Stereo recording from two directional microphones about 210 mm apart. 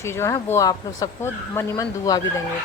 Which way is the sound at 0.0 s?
10° left (ahead or behind).